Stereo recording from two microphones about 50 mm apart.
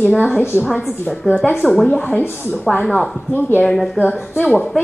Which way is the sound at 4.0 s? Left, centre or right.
Left.